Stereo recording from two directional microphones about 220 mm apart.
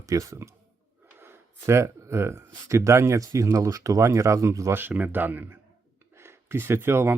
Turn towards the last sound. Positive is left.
turn(degrees=-10)  # may be behind; listen again after turning